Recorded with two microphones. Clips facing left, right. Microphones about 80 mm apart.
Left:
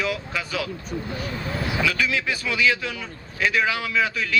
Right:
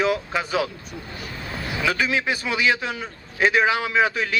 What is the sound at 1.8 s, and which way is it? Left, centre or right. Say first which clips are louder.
A man's voice: right 4 dB; right.